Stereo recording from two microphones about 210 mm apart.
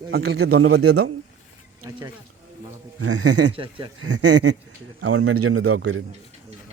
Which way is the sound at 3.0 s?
90° right.